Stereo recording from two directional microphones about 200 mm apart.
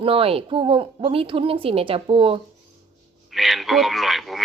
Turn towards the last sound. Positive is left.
turn(degrees=0)  # may be behind; listen again after turning